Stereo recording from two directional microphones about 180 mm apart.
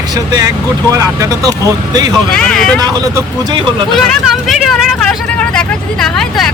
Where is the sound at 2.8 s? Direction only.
20° right (ahead or behind).